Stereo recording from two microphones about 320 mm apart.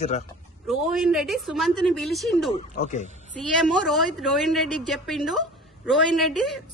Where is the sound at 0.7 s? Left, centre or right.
Centre.